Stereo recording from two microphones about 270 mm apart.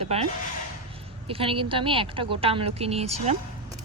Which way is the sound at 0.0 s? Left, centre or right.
Right.